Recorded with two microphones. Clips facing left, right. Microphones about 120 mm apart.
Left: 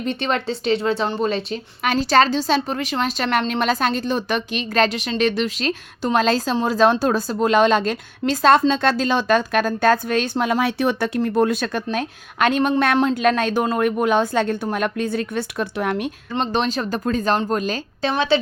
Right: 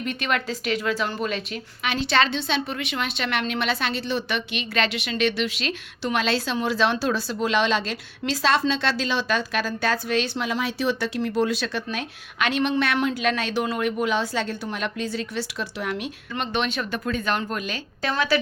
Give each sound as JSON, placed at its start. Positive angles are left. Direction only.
{"t": 0.0, "sound": "a woman's voice", "side_deg": 30}
{"t": 16.3, "sound": "a woman's voice", "side_deg": 35}
{"t": 18.1, "sound": "a woman's voice", "side_deg": 25}